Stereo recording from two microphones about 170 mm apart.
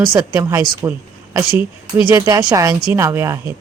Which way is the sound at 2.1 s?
20° right (ahead or behind).